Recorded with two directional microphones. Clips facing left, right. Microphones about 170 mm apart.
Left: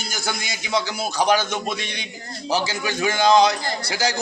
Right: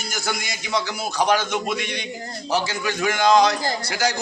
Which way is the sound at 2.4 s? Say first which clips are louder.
Left 1 dB; 10° left (ahead or behind).